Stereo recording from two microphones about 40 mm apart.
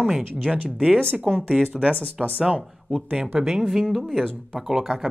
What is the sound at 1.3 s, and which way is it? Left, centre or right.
Speech, centre.